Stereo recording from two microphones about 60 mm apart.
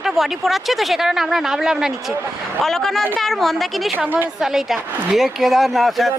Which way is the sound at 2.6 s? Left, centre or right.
Centre.